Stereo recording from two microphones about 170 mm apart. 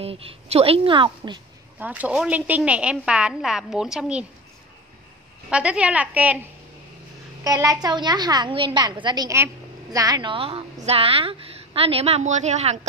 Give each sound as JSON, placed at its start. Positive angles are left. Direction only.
{"t": 0.0, "sound": "a woman's voice", "side_deg": -35}
{"t": 1.8, "sound": "a woman's voice", "side_deg": -10}
{"t": 5.5, "sound": "a woman's voice", "side_deg": -5}
{"t": 7.4, "sound": "a woman's voice", "side_deg": -20}